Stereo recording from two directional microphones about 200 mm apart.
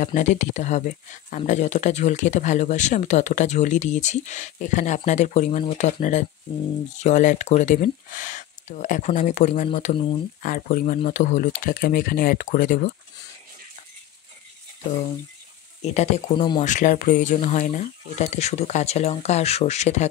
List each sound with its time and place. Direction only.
0.0 s speech: 40° left (ahead or behind)
15.8 s speech: 35° left (ahead or behind)
16.3 s speech: 25° left (ahead or behind)
16.6 s speech: 40° left (ahead or behind)